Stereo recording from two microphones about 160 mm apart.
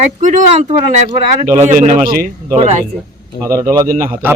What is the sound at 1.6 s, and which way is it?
Speech, 50° right (ahead or behind).